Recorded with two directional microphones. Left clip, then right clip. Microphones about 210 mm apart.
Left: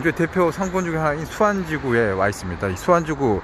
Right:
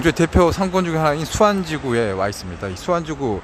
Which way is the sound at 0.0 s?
25° right (ahead or behind).